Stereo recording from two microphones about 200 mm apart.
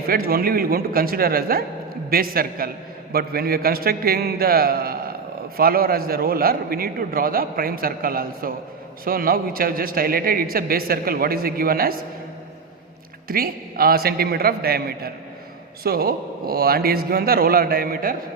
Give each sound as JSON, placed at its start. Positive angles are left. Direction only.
{"t": 0.1, "sound": "a man's voice", "side_deg": -50}
{"t": 13.2, "sound": "a man's voice", "side_deg": -50}